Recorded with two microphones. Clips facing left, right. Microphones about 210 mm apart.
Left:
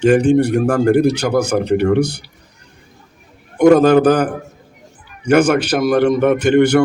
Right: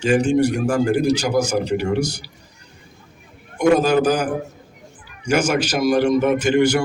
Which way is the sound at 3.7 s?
60° left (ahead or behind).